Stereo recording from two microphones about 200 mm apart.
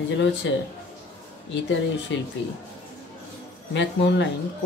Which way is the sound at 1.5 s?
65° left (ahead or behind).